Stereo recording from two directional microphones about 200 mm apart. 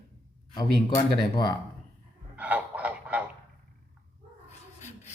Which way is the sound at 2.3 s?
5° right (ahead or behind).